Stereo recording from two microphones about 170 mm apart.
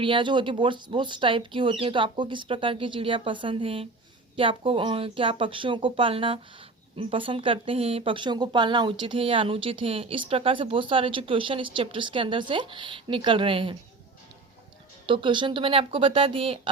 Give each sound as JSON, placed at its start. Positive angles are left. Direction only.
{"t": 0.0, "sound": "speech", "side_deg": -30}
{"t": 15.0, "sound": "speech", "side_deg": -30}